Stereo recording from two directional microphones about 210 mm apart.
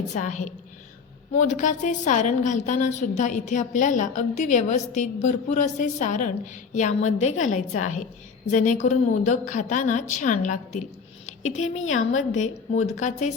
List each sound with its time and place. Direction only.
0.1 s a woman's voice: 35° left (ahead or behind)